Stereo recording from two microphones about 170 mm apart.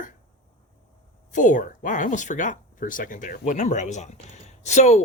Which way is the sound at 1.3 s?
50° left (ahead or behind).